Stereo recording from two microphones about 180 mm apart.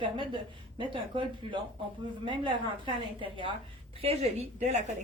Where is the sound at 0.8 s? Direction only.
30° right (ahead or behind).